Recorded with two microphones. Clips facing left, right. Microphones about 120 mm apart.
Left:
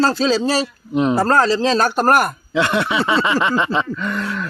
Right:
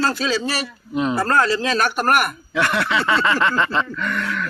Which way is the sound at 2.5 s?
20° left (ahead or behind).